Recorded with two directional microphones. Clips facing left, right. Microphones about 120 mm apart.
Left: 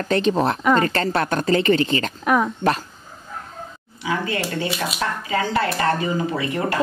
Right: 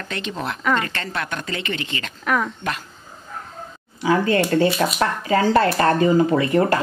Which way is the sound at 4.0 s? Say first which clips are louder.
Right 6 dB; 40° right (ahead or behind).